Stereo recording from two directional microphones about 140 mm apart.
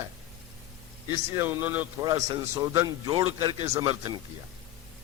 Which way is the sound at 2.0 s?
25° right (ahead or behind).